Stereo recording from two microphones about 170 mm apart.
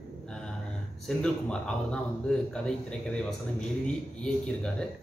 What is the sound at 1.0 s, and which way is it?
Speech, 5° left (ahead or behind).